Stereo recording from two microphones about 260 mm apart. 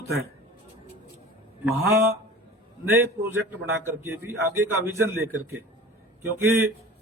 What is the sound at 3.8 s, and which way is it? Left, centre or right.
A man's voice, centre.